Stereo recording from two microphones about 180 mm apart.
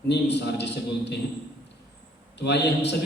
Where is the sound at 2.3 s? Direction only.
70° left (ahead or behind).